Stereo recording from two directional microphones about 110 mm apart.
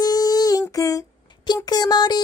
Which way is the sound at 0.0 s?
35° left (ahead or behind).